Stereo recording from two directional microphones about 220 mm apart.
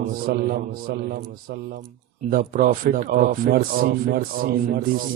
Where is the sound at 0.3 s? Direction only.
40° right (ahead or behind).